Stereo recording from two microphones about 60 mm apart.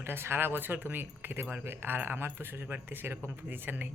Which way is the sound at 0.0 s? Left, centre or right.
Right.